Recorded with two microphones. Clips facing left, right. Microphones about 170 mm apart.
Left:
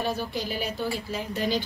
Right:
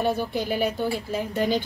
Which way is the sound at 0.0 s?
55° right (ahead or behind).